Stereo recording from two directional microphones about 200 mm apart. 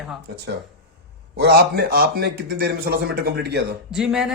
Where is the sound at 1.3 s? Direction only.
55° right (ahead or behind).